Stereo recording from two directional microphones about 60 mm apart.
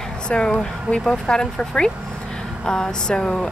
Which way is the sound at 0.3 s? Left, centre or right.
Centre.